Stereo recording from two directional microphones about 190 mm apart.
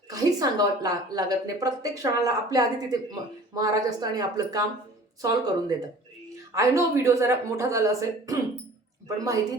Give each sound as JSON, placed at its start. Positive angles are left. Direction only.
{"t": 0.1, "sound": "a woman's voice", "side_deg": -20}